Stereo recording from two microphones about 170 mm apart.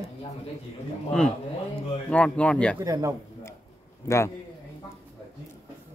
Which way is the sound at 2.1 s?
5° left (ahead or behind).